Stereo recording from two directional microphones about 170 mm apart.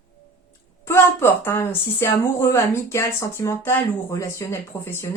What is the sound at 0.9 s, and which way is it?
A woman's voice, 15° left (ahead or behind).